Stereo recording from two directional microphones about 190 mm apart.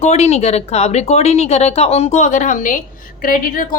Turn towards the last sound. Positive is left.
turn(degrees=45)  # may be behind; listen again after turning